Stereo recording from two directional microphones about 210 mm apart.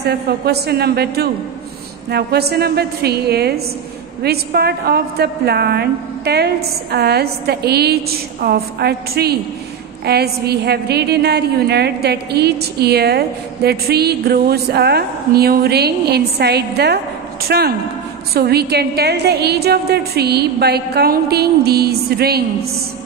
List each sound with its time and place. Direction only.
0.5 s a woman's voice: 50° right (ahead or behind)